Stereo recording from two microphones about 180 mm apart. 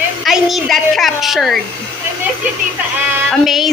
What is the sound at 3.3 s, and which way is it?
Speech, centre (ahead or behind).